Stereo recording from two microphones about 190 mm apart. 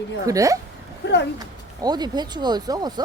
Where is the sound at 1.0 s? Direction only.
65° left (ahead or behind).